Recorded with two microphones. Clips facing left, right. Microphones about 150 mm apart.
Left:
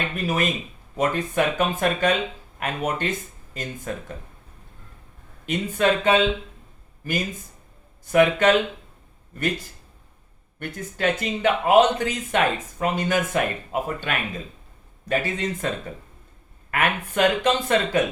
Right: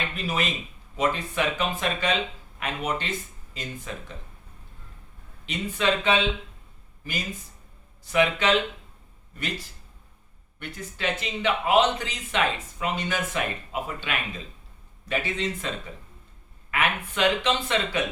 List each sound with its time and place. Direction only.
0.2 s speech: 50° left (ahead or behind)
5.5 s speech: 50° left (ahead or behind)
10.8 s speech: 50° left (ahead or behind)
16.7 s speech: 50° left (ahead or behind)